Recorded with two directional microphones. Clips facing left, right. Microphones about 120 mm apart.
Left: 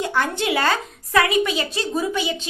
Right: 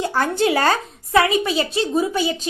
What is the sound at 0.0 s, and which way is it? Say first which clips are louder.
A woman's voice: right 3 dB; 35° right (ahead or behind).